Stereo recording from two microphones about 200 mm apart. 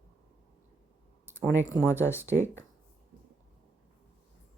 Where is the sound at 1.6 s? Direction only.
15° left (ahead or behind).